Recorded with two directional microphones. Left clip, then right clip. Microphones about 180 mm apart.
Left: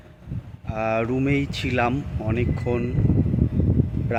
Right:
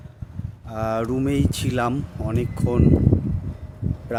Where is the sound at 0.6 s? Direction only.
20° right (ahead or behind).